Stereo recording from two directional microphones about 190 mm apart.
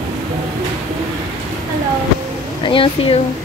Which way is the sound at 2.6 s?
30° left (ahead or behind).